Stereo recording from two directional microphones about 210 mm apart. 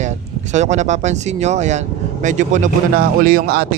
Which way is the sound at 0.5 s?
35° right (ahead or behind).